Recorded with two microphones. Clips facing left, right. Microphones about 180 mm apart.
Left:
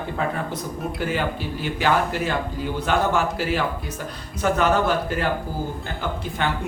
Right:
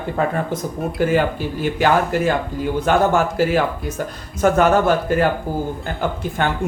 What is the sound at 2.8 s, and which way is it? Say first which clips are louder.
Speech: right 5 dB; 45° right (ahead or behind).